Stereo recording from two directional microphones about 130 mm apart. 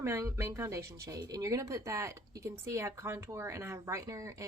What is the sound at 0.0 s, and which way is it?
Speech, 20° right (ahead or behind).